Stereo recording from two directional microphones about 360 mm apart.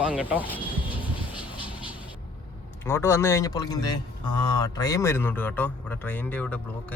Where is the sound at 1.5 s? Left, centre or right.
Centre.